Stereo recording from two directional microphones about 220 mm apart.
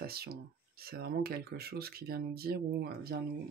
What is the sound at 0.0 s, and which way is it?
Speech, 45° right (ahead or behind).